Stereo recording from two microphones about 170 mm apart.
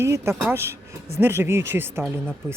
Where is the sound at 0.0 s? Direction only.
15° right (ahead or behind).